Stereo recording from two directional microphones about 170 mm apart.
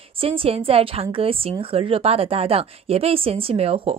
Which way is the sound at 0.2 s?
35° right (ahead or behind).